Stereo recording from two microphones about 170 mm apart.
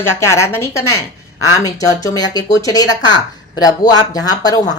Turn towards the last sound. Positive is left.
turn(degrees=20)  # may be behind; listen again after turning